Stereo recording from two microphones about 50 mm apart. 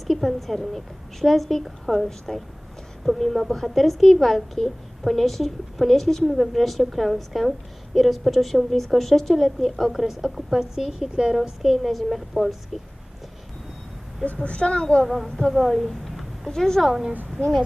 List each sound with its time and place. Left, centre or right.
0.1 s speech: centre
11.6 s speech: centre
14.4 s a woman's voice: left
15.0 s speech: centre
15.9 s a sound: centre
16.5 s a woman's voice: centre
16.8 s a woman's voice: centre